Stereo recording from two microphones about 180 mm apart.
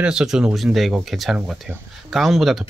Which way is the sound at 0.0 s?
5° right (ahead or behind).